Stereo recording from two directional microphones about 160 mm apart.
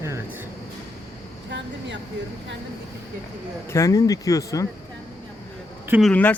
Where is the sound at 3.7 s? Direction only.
20° left (ahead or behind).